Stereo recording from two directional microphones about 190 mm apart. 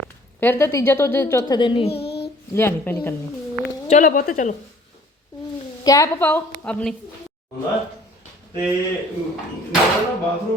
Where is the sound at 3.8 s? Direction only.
40° left (ahead or behind).